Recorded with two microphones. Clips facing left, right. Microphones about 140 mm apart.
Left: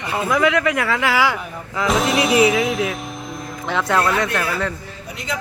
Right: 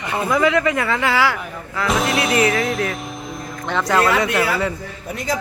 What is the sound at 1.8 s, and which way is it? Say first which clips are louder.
Speech: left 1 dB; centre (ahead or behind).